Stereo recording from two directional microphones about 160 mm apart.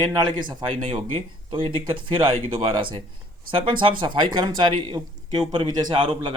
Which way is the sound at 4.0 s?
30° right (ahead or behind).